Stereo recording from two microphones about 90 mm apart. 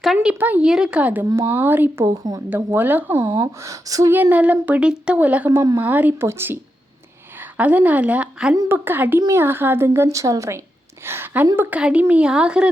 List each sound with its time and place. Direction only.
0.0 s speech: centre (ahead or behind)
0.3 s speech: 20° right (ahead or behind)
0.6 s a woman's voice: 5° right (ahead or behind); by 2.0 s 20° right (ahead or behind)
2.0 s a woman's voice: 45° right (ahead or behind)
2.5 s a woman's voice: 25° right (ahead or behind)
3.3 s speech: 40° right (ahead or behind)
4.1 s a woman's voice: 20° right (ahead or behind)
8.7 s a woman's voice: 25° right (ahead or behind)
11.0 s a woman's voice: 25° right (ahead or behind)
11.8 s speech: 15° right (ahead or behind)